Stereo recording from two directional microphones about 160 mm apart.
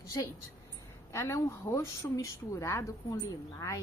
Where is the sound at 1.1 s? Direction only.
20° left (ahead or behind).